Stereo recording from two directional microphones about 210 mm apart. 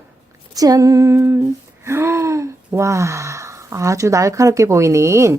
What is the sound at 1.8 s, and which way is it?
A woman's voice, 10° right (ahead or behind).